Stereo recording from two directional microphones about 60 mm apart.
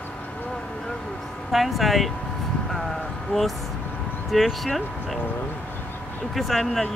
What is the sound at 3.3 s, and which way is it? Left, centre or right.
Speech, left.